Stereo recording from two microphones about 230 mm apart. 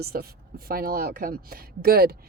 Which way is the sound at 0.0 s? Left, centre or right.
Right.